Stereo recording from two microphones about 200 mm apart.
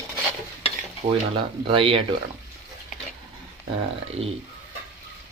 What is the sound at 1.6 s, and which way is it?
Speech, 25° right (ahead or behind).